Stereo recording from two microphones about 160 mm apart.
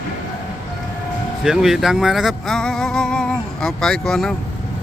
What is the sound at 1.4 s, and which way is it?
Speech, centre (ahead or behind).